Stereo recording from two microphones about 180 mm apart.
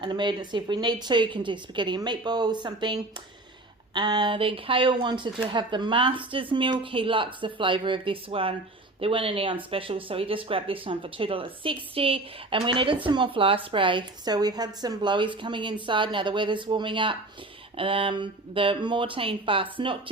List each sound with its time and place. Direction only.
0.0 s speech: 25° right (ahead or behind)